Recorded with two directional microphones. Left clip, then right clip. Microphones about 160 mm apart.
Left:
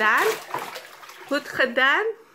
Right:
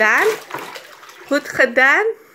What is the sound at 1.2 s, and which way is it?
Speech, 20° right (ahead or behind).